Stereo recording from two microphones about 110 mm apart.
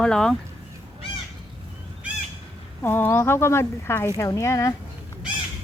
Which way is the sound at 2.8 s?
20° left (ahead or behind).